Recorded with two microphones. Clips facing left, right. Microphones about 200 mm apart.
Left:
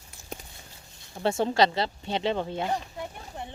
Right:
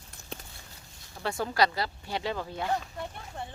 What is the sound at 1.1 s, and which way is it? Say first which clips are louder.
Speech: left 6 dB; 25° left (ahead or behind).